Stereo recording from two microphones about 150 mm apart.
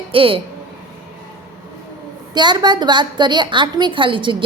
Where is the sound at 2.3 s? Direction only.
30° right (ahead or behind).